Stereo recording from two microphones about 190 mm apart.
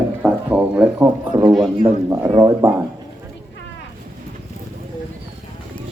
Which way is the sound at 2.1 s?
15° right (ahead or behind).